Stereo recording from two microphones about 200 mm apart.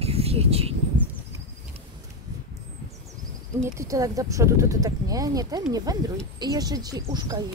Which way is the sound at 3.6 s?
15° right (ahead or behind).